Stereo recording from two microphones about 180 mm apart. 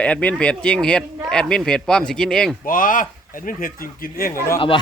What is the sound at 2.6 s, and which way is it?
Speech, 50° left (ahead or behind).